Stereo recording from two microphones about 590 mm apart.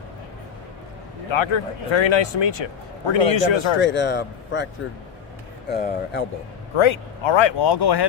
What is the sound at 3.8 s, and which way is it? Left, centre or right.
Speech, centre.